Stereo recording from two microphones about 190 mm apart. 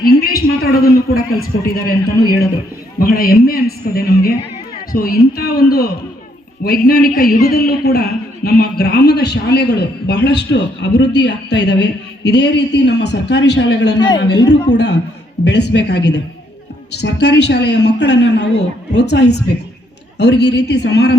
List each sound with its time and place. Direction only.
0.0 s a man's voice: 55° left (ahead or behind)
3.0 s a man's voice: 50° left (ahead or behind)